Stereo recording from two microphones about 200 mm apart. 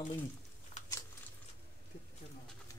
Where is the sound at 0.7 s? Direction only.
30° left (ahead or behind).